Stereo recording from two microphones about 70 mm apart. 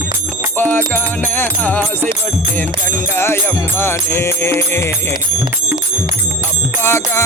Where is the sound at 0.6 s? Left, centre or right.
Left.